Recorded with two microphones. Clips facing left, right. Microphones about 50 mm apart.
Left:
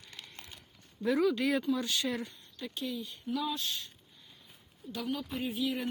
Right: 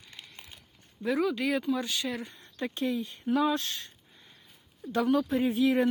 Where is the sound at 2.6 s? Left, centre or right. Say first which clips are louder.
Right 7 dB; right.